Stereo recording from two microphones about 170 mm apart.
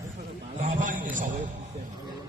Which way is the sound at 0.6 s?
50° right (ahead or behind).